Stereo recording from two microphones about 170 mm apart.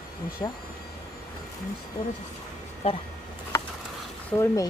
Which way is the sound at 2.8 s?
35° left (ahead or behind).